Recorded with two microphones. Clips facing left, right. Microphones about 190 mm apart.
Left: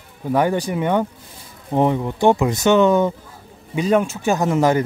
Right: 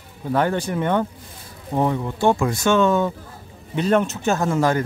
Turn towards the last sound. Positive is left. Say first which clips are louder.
# left 3 dB
turn(degrees=20)  # may be behind; listen again after turning